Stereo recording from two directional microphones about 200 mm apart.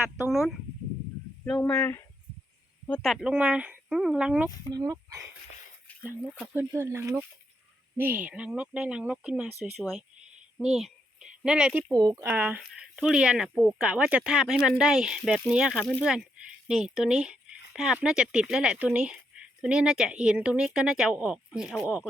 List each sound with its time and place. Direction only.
0.3 s speech: centre (ahead or behind)
4.4 s speech: 20° right (ahead or behind); by 10.0 s centre (ahead or behind)
10.6 s a sound: centre (ahead or behind)
11.9 s speech: 20° right (ahead or behind)